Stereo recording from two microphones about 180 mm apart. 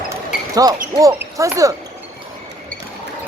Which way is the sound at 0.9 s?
25° right (ahead or behind).